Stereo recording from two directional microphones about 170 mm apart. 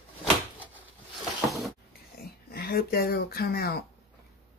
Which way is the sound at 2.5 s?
65° left (ahead or behind).